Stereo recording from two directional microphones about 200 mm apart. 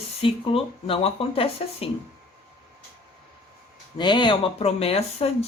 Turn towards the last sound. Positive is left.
turn(degrees=30)  # may be behind; listen again after turning